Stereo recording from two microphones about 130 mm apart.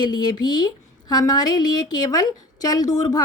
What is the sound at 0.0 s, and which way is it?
A woman's voice, 35° left (ahead or behind).